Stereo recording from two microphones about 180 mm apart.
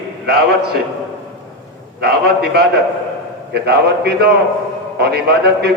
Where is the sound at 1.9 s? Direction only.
65° right (ahead or behind).